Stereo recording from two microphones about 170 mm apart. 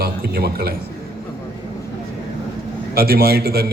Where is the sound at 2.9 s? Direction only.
65° right (ahead or behind).